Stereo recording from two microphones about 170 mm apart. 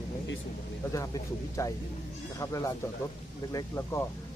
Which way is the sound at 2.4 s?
20° left (ahead or behind).